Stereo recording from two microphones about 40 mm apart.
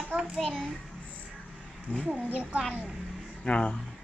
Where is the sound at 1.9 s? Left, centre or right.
Left.